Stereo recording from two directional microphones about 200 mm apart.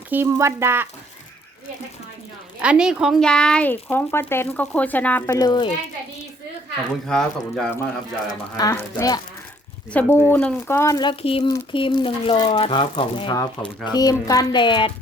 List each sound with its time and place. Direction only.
0.1 s speech: 10° right (ahead or behind)
2.6 s speech: 5° right (ahead or behind); by 5.6 s 20° left (ahead or behind)
7.1 s speech: 5° left (ahead or behind)
8.5 s speech: 15° left (ahead or behind)